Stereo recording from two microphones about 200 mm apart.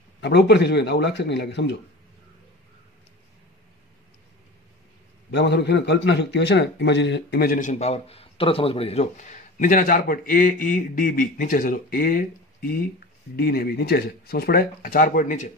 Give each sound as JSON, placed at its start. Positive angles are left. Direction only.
{"t": 0.2, "sound": "speech", "side_deg": 60}
{"t": 5.3, "sound": "a man's voice", "side_deg": 60}